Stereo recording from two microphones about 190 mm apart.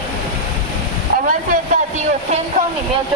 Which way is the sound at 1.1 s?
45° right (ahead or behind).